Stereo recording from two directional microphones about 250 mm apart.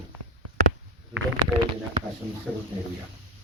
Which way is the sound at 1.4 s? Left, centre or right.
Centre.